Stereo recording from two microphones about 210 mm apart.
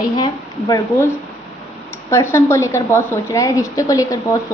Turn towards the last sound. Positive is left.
turn(degrees=15)  # may be behind; listen again after turning